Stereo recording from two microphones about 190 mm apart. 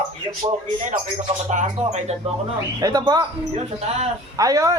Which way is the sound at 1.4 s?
35° right (ahead or behind).